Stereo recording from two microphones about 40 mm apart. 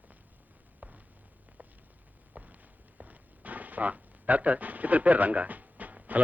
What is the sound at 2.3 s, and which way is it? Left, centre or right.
Walk, right.